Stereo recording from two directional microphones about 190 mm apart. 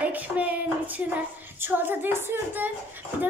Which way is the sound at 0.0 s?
10° right (ahead or behind).